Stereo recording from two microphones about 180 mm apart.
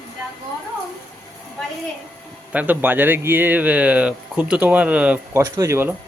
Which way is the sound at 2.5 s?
10° right (ahead or behind).